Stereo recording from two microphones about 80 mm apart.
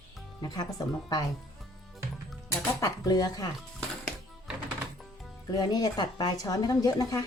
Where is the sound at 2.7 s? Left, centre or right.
Left.